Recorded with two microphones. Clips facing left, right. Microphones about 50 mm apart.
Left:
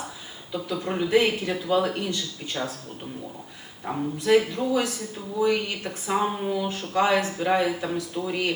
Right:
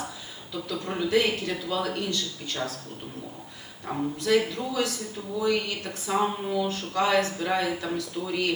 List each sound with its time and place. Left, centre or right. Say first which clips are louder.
0.5 s speech: left 3 dB; centre
3.8 s speech: left 3 dB; centre